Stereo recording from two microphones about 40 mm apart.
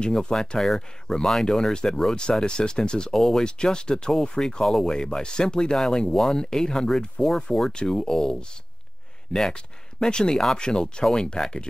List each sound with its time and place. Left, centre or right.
0.0 s speech: centre
1.2 s speech: centre
2.4 s speech: left
3.4 s speech: left
9.5 s speech: centre